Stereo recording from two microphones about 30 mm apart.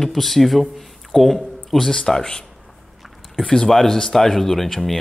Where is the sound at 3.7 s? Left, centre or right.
Centre.